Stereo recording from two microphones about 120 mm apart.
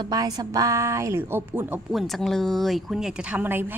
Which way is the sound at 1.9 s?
Centre (ahead or behind).